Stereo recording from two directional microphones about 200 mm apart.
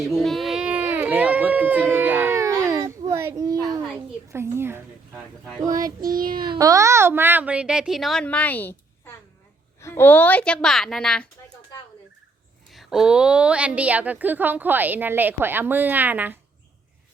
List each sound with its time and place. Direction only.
0.0 s speech: centre (ahead or behind)
1.9 s a sound: 10° right (ahead or behind)
4.3 s a woman's voice: 10° right (ahead or behind)
5.6 s child singing: 20° right (ahead or behind)
6.0 s child singing: 45° right (ahead or behind)
6.4 s a woman's voice: 20° right (ahead or behind); by 11.5 s 5° left (ahead or behind)
12.7 s a woman's voice: centre (ahead or behind)